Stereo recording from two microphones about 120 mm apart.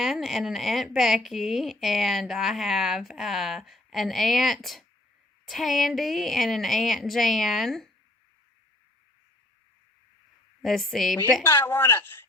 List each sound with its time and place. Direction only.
0.0 s a woman's voice: centre (ahead or behind)
10.6 s a woman's voice: centre (ahead or behind)
11.4 s speech: 20° left (ahead or behind)